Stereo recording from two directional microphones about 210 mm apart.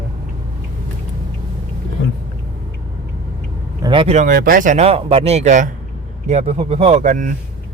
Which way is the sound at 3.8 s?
25° right (ahead or behind).